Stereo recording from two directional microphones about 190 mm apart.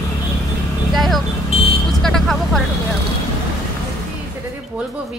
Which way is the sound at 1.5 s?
30° left (ahead or behind).